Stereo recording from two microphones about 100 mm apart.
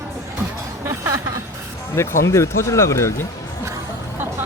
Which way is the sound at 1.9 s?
30° left (ahead or behind).